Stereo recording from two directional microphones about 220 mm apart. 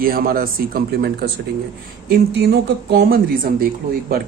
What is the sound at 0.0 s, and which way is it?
A man's voice, 40° right (ahead or behind).